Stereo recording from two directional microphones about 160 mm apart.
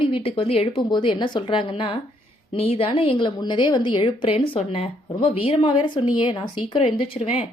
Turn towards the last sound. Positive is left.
turn(degrees=35)  # may be behind; listen again after turning